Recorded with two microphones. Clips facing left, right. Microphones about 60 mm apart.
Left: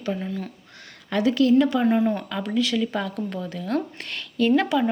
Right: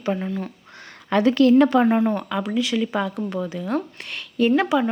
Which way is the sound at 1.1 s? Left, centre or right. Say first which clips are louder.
Right 3 dB; right.